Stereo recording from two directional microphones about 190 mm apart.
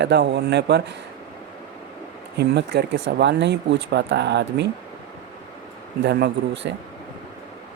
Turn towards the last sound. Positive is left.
turn(degrees=-65)  # may be behind; listen again after turning